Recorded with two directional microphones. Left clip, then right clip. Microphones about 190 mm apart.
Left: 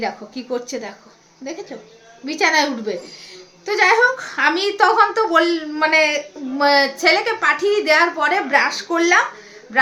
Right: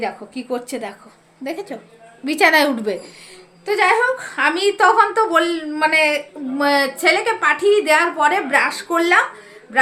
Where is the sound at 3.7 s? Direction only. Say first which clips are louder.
Left 1 dB; centre (ahead or behind).